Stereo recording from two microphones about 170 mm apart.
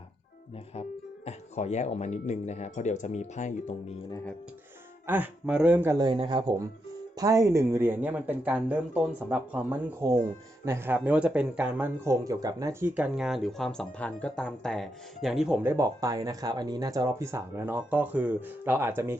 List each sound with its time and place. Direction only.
0.7 s speech: 40° left (ahead or behind)
5.0 s speech: 10° right (ahead or behind)
6.1 s speech: 30° right (ahead or behind); by 19.1 s 15° right (ahead or behind)